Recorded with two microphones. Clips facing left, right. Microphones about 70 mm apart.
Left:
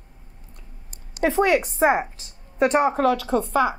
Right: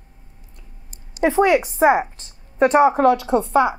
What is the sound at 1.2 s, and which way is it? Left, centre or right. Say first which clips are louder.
Speech: right 3 dB; centre.